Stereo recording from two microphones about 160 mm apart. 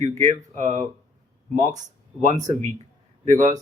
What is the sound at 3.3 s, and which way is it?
Speech, 50° right (ahead or behind).